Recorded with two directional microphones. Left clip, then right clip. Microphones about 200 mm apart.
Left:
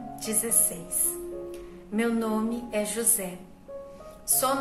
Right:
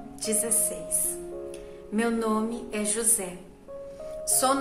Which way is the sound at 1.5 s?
15° right (ahead or behind).